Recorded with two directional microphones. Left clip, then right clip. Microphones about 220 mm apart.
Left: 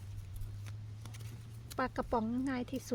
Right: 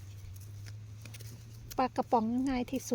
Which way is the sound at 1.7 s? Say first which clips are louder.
Right 6 dB; 25° right (ahead or behind).